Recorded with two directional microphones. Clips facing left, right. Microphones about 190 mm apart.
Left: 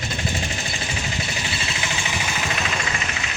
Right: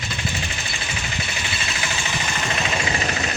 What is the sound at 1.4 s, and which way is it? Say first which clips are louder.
Vehicle: left 1 dB; 30° left (ahead or behind).